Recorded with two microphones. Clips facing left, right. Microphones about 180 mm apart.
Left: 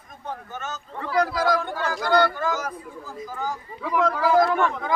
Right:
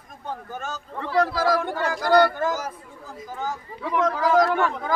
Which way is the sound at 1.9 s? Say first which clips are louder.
Right 3 dB; 40° right (ahead or behind).